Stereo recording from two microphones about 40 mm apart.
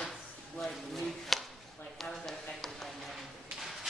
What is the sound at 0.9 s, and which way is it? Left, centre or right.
A woman's voice, centre.